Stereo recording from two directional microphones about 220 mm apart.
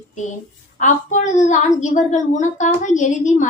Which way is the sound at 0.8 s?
35° left (ahead or behind).